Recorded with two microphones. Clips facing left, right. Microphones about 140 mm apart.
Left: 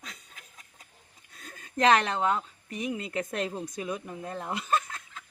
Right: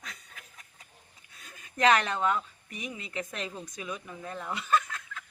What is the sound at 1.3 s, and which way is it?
Speech, 40° left (ahead or behind).